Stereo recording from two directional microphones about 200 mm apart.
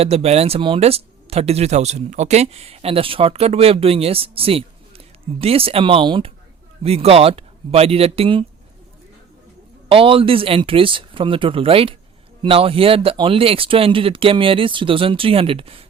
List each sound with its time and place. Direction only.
0.0 s speech: 30° right (ahead or behind)
9.9 s speech: 25° right (ahead or behind)